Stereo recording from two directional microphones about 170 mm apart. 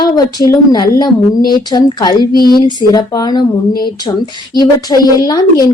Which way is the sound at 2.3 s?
60° left (ahead or behind).